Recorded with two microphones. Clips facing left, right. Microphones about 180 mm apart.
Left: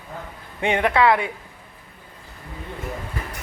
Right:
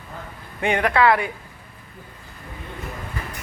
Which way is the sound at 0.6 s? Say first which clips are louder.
Even; 25° left (ahead or behind).